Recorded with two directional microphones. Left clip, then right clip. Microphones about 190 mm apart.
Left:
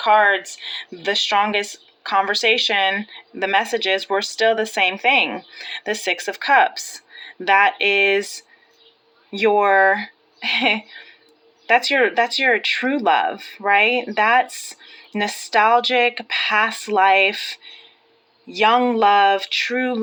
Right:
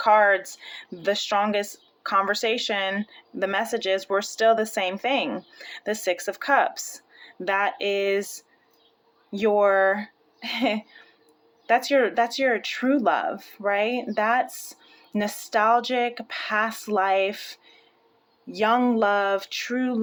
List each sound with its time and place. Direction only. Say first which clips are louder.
0.0 s speech: left 3 dB; 30° right (ahead or behind)
9.4 s speech: left 5 dB; 20° right (ahead or behind)
11.9 s speech: left 4 dB; 25° right (ahead or behind)